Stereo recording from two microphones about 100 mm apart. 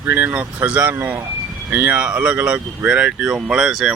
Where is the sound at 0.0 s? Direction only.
20° right (ahead or behind).